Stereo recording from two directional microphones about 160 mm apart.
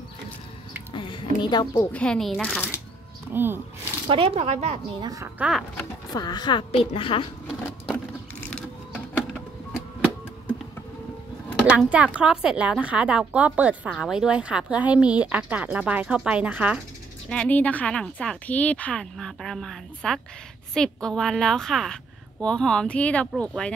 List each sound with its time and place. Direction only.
0.9 s a sound: 30° left (ahead or behind)
1.9 s a woman's voice: 5° left (ahead or behind)
3.3 s speech: 15° right (ahead or behind)
4.1 s speech: 40° right (ahead or behind)
5.0 s a woman's voice: 20° right (ahead or behind)
5.4 s a woman's voice: centre (ahead or behind)
6.1 s a woman's voice: 25° left (ahead or behind)
7.4 s a sound: centre (ahead or behind)
11.7 s speech: 5° right (ahead or behind)
17.3 s a woman's voice: 10° left (ahead or behind)